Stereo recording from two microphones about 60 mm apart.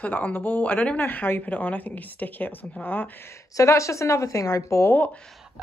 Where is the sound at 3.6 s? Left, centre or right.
Left.